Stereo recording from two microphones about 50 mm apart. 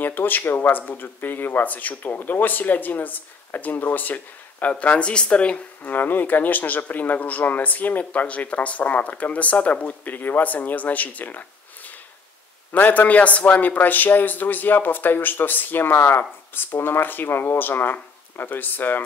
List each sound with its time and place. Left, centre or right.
0.0 s a man's voice: left
5.8 s a man's voice: left
10.1 s a man's voice: left